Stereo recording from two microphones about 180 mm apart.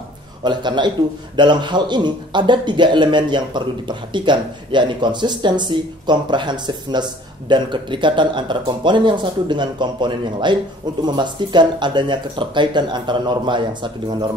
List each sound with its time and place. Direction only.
0.4 s a man's voice: 25° right (ahead or behind)